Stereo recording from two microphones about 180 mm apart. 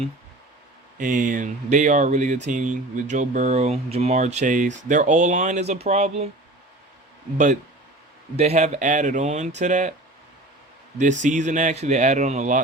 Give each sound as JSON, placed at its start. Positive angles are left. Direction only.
{"t": 0.9, "sound": "speech", "side_deg": -45}
{"t": 8.4, "sound": "speech", "side_deg": -35}
{"t": 11.2, "sound": "speech", "side_deg": -40}